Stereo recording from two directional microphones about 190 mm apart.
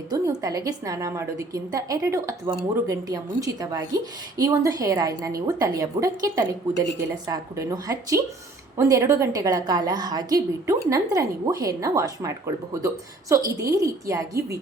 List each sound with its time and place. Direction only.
0.1 s a woman's voice: 20° right (ahead or behind)